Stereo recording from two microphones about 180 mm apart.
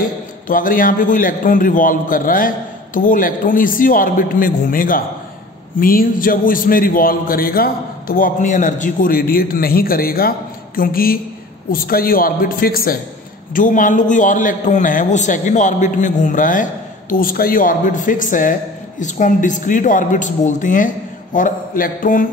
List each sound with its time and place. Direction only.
0.0 s speech: 50° left (ahead or behind)